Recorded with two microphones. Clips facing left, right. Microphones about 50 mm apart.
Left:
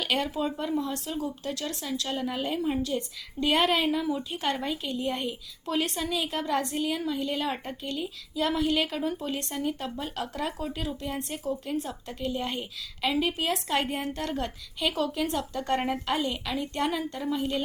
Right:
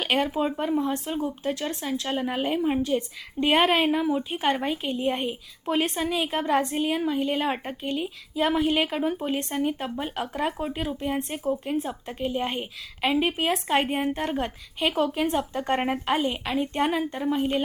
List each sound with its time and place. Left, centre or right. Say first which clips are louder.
0.0 s a woman's voice: right 4 dB; right